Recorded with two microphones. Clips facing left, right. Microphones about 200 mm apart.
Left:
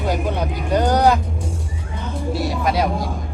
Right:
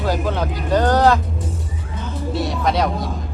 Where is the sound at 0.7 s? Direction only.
15° left (ahead or behind).